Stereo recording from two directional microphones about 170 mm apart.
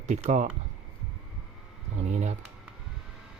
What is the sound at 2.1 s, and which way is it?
Speech, 45° right (ahead or behind).